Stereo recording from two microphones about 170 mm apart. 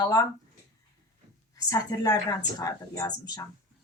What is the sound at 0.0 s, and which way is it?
Speech, 20° left (ahead or behind).